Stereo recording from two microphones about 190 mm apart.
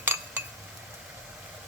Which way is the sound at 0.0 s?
10° right (ahead or behind).